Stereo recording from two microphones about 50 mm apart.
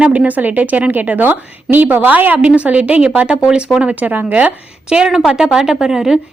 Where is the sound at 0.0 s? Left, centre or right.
Right.